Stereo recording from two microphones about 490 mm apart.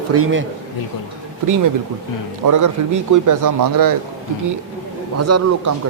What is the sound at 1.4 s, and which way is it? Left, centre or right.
A man's voice, right.